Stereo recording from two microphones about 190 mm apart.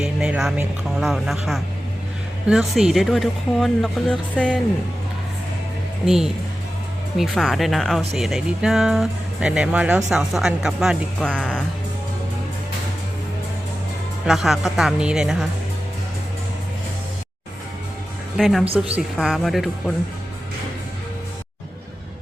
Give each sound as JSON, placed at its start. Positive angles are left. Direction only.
{"t": 0.0, "sound": "speech", "side_deg": -5}
{"t": 6.1, "sound": "speech", "side_deg": 0}
{"t": 14.3, "sound": "speech", "side_deg": 0}
{"t": 18.3, "sound": "speech", "side_deg": 0}
{"t": 18.6, "sound": "speech", "side_deg": -30}
{"t": 18.9, "sound": "speech", "side_deg": 0}